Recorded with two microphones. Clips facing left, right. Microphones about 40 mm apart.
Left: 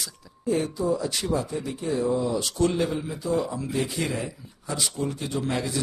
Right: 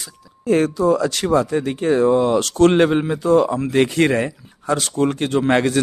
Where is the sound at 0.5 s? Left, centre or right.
Right.